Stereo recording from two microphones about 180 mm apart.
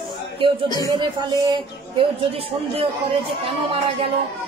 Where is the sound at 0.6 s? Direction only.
20° left (ahead or behind).